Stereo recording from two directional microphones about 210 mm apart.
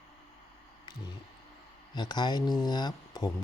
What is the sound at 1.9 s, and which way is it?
Speech, 20° left (ahead or behind).